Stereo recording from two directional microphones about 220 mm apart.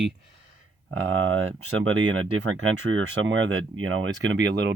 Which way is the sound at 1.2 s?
65° right (ahead or behind).